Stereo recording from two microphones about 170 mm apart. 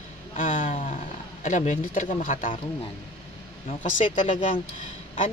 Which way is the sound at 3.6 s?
45° left (ahead or behind).